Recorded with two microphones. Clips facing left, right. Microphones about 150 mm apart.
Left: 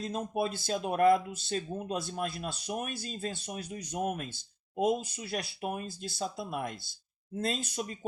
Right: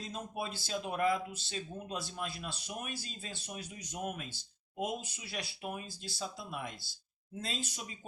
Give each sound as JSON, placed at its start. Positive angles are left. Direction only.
{"t": 0.0, "sound": "speech", "side_deg": 50}